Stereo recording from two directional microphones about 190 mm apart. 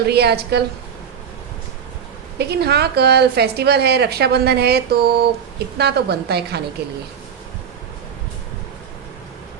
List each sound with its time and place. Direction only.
0.0 s a woman's voice: 60° right (ahead or behind)
2.4 s a woman's voice: 60° right (ahead or behind)